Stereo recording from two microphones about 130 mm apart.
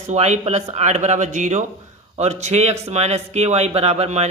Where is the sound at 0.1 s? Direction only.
60° right (ahead or behind).